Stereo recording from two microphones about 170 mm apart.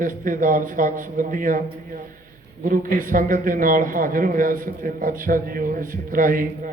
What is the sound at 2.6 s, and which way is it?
A man's voice, 55° right (ahead or behind).